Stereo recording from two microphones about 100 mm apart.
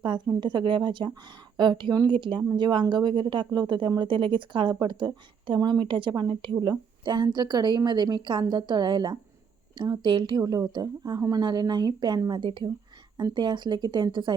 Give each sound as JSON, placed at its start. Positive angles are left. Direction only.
{"t": 0.3, "sound": "a woman's voice", "side_deg": -50}
{"t": 5.5, "sound": "a woman's voice", "side_deg": -40}
{"t": 5.8, "sound": "a woman's voice", "side_deg": -55}